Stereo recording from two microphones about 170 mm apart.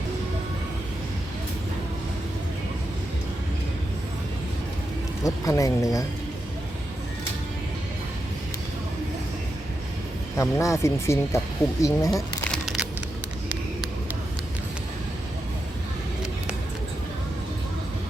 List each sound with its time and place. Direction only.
5.2 s speech: 20° left (ahead or behind)
10.3 s speech: 20° left (ahead or behind)
12.5 s a sound: 5° right (ahead or behind)